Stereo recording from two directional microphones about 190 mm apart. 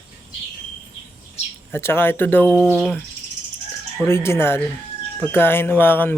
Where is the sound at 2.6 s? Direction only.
5° left (ahead or behind).